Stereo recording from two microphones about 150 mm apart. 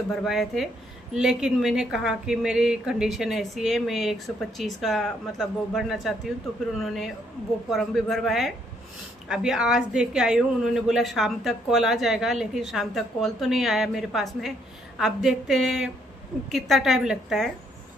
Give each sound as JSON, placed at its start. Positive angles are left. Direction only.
{"t": 0.1, "sound": "a woman's voice", "side_deg": 0}